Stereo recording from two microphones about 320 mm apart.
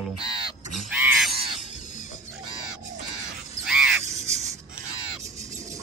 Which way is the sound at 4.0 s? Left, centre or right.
Right.